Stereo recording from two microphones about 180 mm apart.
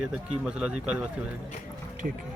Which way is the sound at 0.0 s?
5° right (ahead or behind).